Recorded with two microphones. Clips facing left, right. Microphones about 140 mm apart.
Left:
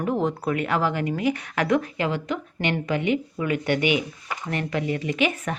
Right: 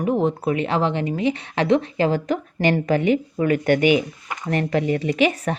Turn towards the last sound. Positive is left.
turn(degrees=-35)  # may be behind; listen again after turning